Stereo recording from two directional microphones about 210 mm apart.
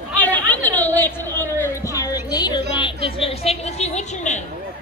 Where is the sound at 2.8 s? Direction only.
25° left (ahead or behind).